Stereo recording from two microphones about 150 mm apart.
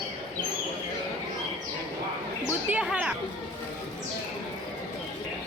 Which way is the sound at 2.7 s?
10° right (ahead or behind).